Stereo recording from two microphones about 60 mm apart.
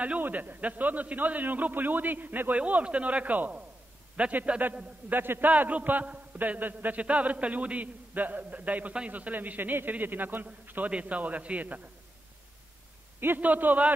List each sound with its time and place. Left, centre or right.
0.0 s a man's voice: right
13.2 s a man's voice: right